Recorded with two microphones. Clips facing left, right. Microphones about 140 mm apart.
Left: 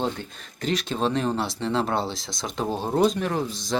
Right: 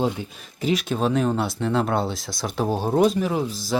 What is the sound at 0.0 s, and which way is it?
Speech, 10° right (ahead or behind).